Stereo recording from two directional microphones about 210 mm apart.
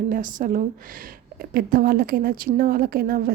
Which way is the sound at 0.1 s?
40° right (ahead or behind).